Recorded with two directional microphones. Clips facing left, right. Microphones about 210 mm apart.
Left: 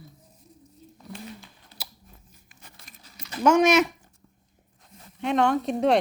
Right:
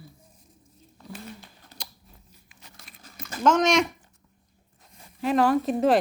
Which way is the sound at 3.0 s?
50° right (ahead or behind).